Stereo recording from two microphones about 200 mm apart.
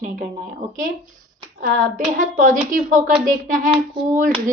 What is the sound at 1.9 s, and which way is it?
A woman's voice, 40° right (ahead or behind).